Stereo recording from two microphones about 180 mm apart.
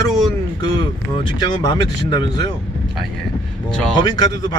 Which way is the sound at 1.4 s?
20° left (ahead or behind).